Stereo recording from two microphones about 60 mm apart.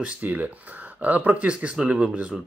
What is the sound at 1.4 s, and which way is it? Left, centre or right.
Speech, centre.